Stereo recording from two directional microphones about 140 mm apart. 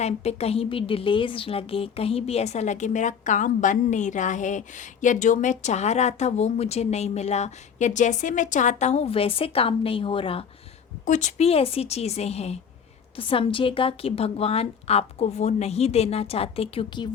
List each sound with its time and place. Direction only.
0.0 s a woman's voice: 50° left (ahead or behind)
11.0 s a woman's voice: 60° left (ahead or behind); by 17.1 s 40° left (ahead or behind)